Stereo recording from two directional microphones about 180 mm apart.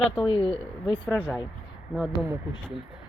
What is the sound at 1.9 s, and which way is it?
Speech, centre (ahead or behind).